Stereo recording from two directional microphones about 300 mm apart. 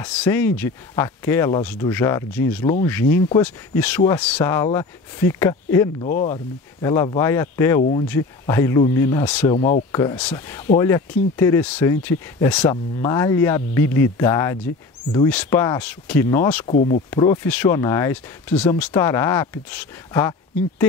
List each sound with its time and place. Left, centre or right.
0.0 s speech: centre
6.0 s speech: left
6.8 s speech: centre
9.5 s speech: centre
16.6 s speech: left
17.1 s speech: centre